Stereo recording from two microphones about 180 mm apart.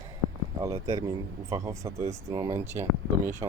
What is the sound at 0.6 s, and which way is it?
Speech, 20° right (ahead or behind).